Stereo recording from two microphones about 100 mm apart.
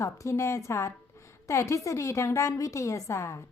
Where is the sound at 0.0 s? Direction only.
30° left (ahead or behind).